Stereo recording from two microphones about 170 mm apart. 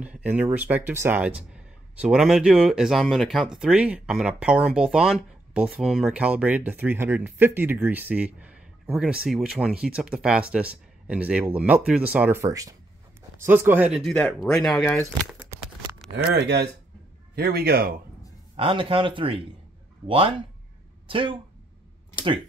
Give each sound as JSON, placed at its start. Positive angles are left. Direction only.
{"t": 0.0, "sound": "speech", "side_deg": -10}
{"t": 14.1, "sound": "speech", "side_deg": 5}
{"t": 15.5, "sound": "a sound", "side_deg": -15}
{"t": 16.3, "sound": "speech", "side_deg": -80}
{"t": 17.4, "sound": "a man's voice", "side_deg": -65}
{"t": 18.6, "sound": "speech", "side_deg": -30}